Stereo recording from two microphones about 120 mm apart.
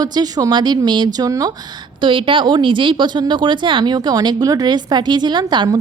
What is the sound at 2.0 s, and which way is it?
Speech, 45° right (ahead or behind).